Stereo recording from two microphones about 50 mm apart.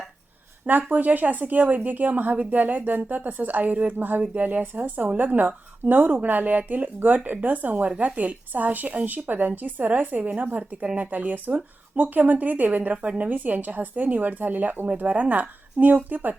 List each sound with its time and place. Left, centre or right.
0.7 s speech: right